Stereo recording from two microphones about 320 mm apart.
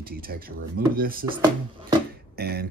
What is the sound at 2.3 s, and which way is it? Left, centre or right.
Beatboxing, right.